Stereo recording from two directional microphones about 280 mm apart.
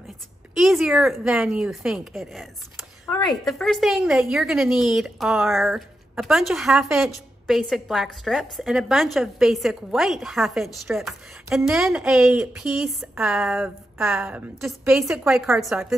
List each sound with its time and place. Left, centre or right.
0.6 s a woman's voice: centre